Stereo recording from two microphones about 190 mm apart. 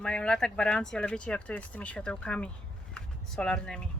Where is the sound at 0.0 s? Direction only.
5° left (ahead or behind).